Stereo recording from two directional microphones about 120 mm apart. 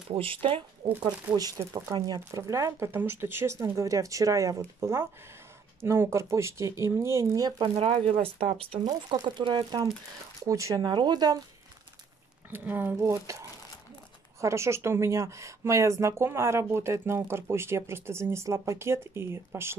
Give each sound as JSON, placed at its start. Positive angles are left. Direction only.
{"t": 0.1, "sound": "speech", "side_deg": -50}
{"t": 1.0, "sound": "a woman's voice", "side_deg": -35}
{"t": 7.6, "sound": "speech", "side_deg": -55}
{"t": 8.8, "sound": "speech", "side_deg": -35}
{"t": 10.4, "sound": "a woman's voice", "side_deg": -25}
{"t": 10.9, "sound": "speech", "side_deg": -40}
{"t": 12.4, "sound": "a woman's voice", "side_deg": -15}